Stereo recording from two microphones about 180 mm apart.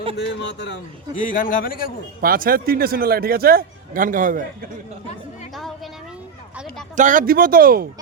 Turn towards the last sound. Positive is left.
turn(degrees=-55)  # may be behind; listen again after turning